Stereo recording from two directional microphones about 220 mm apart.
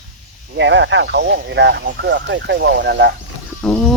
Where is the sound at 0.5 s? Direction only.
55° right (ahead or behind).